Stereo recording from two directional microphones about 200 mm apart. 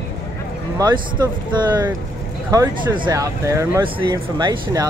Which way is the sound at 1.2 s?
15° right (ahead or behind).